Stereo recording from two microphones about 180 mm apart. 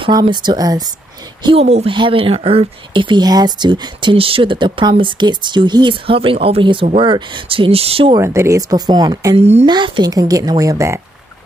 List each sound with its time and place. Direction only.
0.0 s speech: 25° right (ahead or behind)
8.2 s speech: 15° right (ahead or behind)
9.4 s speech: 35° right (ahead or behind)
9.7 s speech: 25° right (ahead or behind)